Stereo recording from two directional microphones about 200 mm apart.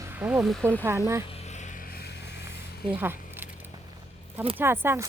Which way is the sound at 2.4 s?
10° right (ahead or behind).